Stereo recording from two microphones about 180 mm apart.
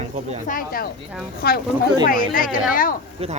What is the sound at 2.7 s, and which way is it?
Speech, 50° left (ahead or behind).